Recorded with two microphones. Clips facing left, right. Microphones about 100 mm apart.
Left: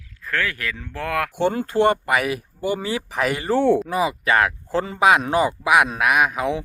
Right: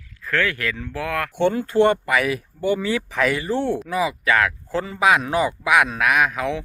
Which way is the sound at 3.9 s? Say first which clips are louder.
Left 1 dB; 25° left (ahead or behind).